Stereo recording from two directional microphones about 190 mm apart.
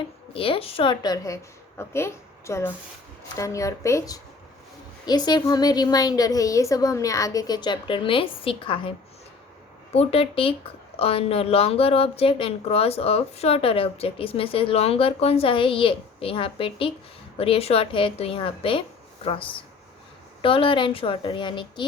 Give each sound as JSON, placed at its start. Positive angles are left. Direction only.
{"t": 0.3, "sound": "a woman's voice", "side_deg": 30}
{"t": 9.9, "sound": "speech", "side_deg": 30}